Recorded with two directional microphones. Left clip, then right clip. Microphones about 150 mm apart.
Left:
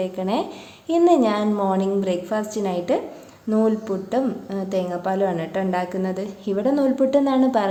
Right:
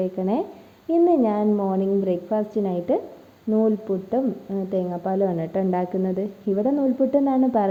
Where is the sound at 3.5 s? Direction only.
15° right (ahead or behind).